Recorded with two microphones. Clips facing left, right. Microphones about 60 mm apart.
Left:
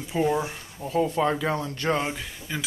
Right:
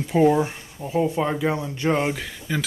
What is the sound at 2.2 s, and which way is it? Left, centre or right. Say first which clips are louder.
Speech: right 5 dB; right.